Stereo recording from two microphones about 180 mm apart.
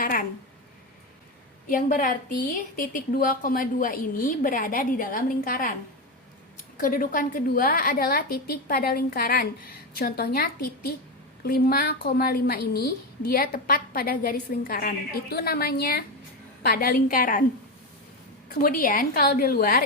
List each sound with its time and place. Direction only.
0.0 s speech: 50° left (ahead or behind)
1.6 s a woman's voice: 50° left (ahead or behind)
6.7 s a woman's voice: 50° left (ahead or behind)
18.4 s a woman's voice: 50° left (ahead or behind)